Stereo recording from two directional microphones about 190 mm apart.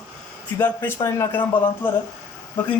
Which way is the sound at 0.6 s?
10° left (ahead or behind).